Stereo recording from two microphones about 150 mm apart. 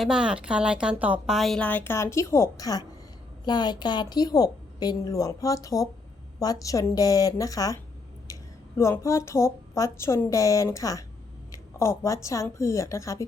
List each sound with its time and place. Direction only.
0.0 s a woman's voice: 5° right (ahead or behind); by 7.8 s 20° left (ahead or behind)
8.8 s a woman's voice: 20° left (ahead or behind)